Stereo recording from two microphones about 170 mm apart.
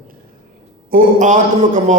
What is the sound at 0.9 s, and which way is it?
Speech, 45° right (ahead or behind).